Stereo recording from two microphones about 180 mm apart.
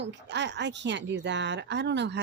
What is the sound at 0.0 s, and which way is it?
Speech, 75° right (ahead or behind).